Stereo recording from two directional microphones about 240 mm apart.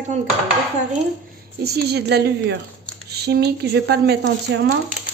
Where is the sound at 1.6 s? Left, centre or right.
Right.